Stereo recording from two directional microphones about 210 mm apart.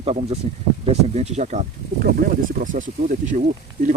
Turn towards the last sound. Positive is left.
turn(degrees=-40)  # may be behind; listen again after turning